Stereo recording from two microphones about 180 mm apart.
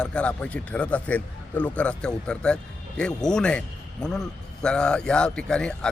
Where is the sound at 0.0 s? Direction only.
5° left (ahead or behind).